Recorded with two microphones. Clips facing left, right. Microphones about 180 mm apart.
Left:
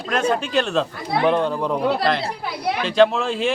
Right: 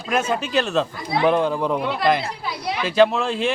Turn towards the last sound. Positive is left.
turn(degrees=0)  # may be behind; listen again after turning